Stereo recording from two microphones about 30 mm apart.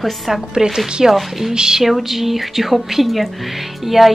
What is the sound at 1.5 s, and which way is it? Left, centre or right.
Speech, right.